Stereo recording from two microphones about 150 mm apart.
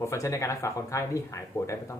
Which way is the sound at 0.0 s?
20° left (ahead or behind).